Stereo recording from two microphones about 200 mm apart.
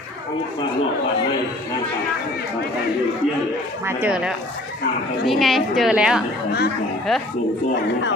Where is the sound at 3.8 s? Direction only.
10° right (ahead or behind).